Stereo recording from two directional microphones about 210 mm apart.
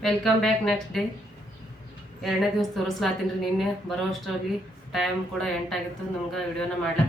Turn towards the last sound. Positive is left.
turn(degrees=5)  # may be behind; listen again after turning